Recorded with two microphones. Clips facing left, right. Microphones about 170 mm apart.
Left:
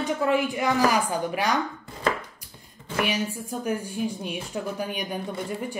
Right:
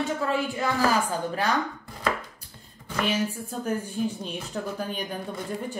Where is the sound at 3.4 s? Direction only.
10° left (ahead or behind).